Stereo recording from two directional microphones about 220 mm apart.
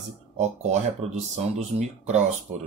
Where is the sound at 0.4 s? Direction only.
30° right (ahead or behind).